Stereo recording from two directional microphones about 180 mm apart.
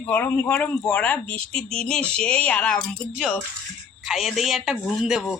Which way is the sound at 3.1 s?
5° right (ahead or behind).